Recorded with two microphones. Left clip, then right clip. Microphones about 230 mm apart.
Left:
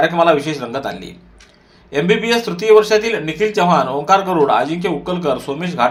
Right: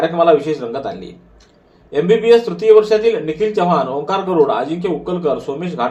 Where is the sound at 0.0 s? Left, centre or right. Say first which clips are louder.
Even; left.